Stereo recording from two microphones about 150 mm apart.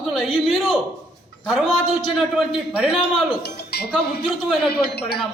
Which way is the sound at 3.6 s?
90° left.